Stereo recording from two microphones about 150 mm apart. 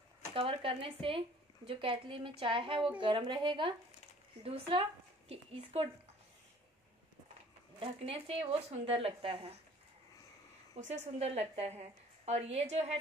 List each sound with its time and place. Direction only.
0.3 s speech: 35° right (ahead or behind)
7.8 s speech: 40° right (ahead or behind)
10.7 s a woman's voice: 45° right (ahead or behind)